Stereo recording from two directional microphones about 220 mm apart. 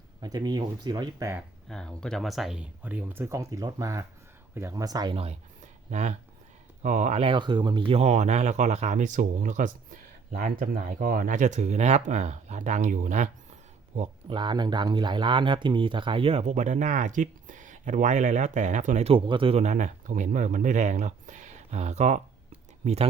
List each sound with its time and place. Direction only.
0.2 s speech: 20° right (ahead or behind)
1.4 s speech: 5° left (ahead or behind); by 23.0 s 30° right (ahead or behind)